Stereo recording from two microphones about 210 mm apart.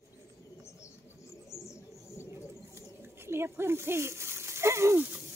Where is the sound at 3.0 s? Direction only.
10° right (ahead or behind).